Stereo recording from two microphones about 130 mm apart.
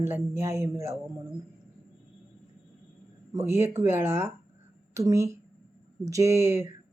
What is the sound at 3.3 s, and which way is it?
Speech, 20° right (ahead or behind).